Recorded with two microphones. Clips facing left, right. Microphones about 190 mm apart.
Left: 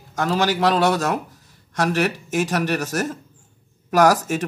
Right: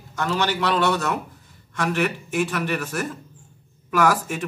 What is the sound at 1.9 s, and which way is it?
Speech, 90° left.